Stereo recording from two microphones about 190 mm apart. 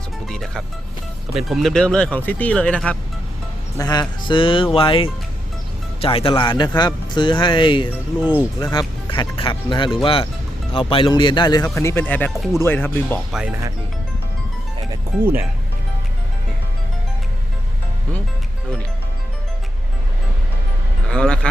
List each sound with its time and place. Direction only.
0.3 s speech: centre (ahead or behind)
3.8 s speech: 20° left (ahead or behind)
8.2 s speech: 10° right (ahead or behind)
8.6 s speech: 20° left (ahead or behind)
15.2 s speech: 10° right (ahead or behind)
21.1 s a sound: 5° left (ahead or behind)